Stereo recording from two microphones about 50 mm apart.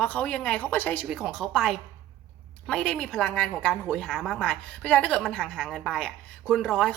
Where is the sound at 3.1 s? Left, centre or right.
Left.